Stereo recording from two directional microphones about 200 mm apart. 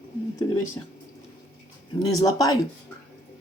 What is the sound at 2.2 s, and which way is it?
Speech, 15° left (ahead or behind).